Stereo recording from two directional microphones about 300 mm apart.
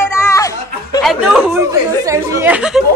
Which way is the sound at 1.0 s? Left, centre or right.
Centre.